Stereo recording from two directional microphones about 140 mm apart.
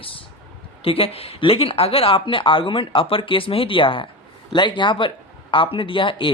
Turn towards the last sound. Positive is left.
turn(degrees=35)  # may be behind; listen again after turning